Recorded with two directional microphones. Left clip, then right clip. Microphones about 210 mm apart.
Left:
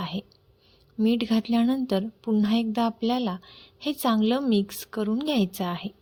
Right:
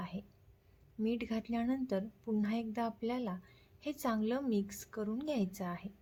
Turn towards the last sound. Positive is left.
turn(degrees=35)  # may be behind; listen again after turning